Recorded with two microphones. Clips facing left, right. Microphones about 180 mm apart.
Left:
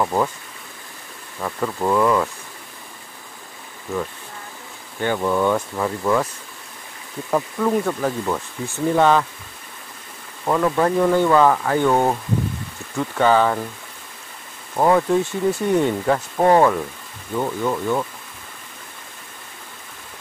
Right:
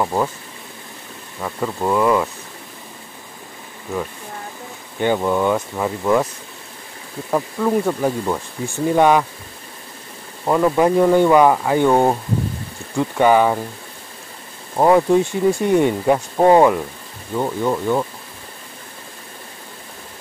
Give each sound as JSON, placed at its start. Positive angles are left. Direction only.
{"t": 0.0, "sound": "speech", "side_deg": -10}
{"t": 1.4, "sound": "speech", "side_deg": -10}
{"t": 5.0, "sound": "speech", "side_deg": -15}
{"t": 7.2, "sound": "speech", "side_deg": -10}
{"t": 10.4, "sound": "speech", "side_deg": -15}
{"t": 14.8, "sound": "speech", "side_deg": -15}